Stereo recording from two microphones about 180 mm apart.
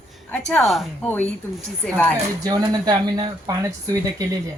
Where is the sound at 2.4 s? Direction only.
20° right (ahead or behind).